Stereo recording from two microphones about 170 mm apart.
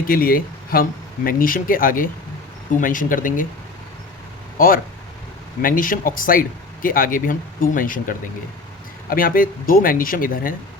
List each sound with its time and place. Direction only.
0.1 s speech: 60° left (ahead or behind)
4.5 s speech: 55° left (ahead or behind)